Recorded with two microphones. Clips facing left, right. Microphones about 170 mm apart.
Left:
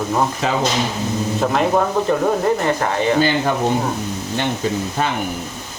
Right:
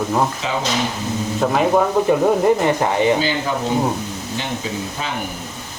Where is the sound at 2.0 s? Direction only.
15° right (ahead or behind).